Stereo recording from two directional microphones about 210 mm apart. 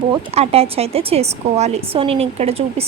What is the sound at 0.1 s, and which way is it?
Speech, 30° right (ahead or behind).